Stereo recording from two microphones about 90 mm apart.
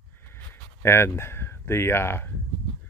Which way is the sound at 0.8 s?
25° left (ahead or behind).